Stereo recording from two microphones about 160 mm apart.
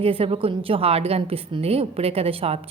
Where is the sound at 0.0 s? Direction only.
35° right (ahead or behind).